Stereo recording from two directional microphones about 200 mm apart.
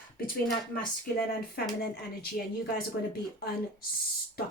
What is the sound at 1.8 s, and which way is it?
Speech, 50° left (ahead or behind).